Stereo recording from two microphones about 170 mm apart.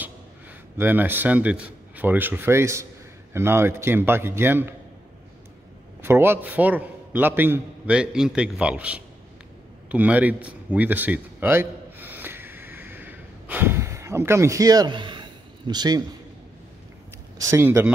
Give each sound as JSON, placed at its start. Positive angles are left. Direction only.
{"t": 0.7, "sound": "a man's voice", "side_deg": -10}
{"t": 6.0, "sound": "a man's voice", "side_deg": -15}
{"t": 9.8, "sound": "a sound", "side_deg": -10}
{"t": 17.4, "sound": "a man's voice", "side_deg": -15}